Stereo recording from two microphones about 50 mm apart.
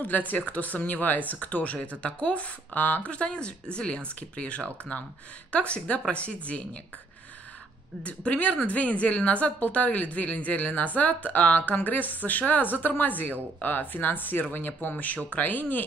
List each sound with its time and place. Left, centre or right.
0.0 s speech: left
2.7 s speech: left
3.1 s speech: left
8.0 s speech: left